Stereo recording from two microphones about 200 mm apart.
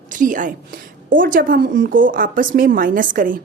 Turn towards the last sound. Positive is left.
turn(degrees=-45)  # may be behind; listen again after turning